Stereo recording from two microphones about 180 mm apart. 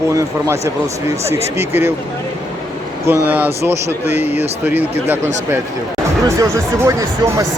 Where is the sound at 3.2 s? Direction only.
10° right (ahead or behind).